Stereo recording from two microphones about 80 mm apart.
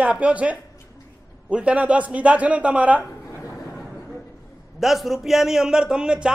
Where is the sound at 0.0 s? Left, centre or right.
Centre.